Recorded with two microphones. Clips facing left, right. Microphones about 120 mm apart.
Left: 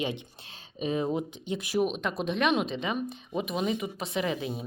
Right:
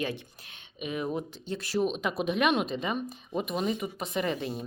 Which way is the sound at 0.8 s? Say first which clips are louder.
Left 4 dB; 35° left (ahead or behind).